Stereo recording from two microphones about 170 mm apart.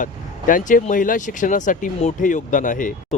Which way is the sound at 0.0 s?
50° left (ahead or behind).